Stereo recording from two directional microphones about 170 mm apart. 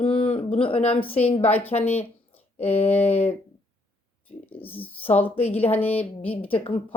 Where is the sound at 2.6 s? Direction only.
35° left (ahead or behind).